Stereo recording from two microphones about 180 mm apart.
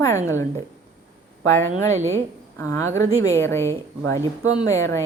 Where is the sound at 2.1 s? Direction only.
15° left (ahead or behind).